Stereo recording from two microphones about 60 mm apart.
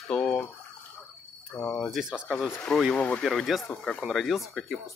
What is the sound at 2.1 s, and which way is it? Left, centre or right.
Speech, centre.